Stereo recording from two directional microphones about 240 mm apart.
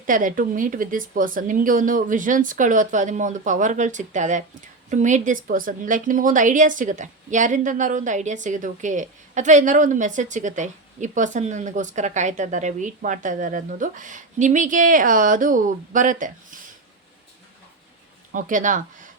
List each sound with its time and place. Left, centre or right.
0.0 s a woman's voice: right
18.3 s a woman's voice: right